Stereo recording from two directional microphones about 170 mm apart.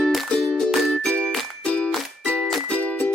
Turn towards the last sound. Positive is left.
turn(degrees=10)  # may be behind; listen again after turning